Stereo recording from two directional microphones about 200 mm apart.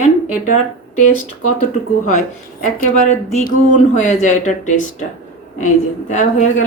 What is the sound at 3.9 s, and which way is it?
Speech, 35° left (ahead or behind).